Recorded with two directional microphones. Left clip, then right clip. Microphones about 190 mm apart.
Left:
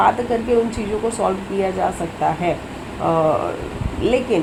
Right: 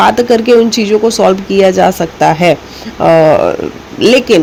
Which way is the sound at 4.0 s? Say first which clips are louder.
Right 11 dB; 55° right (ahead or behind).